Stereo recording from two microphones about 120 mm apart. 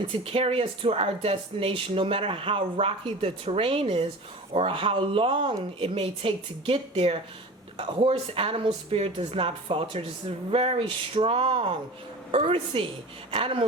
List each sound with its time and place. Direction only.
0.1 s speech: 50° right (ahead or behind)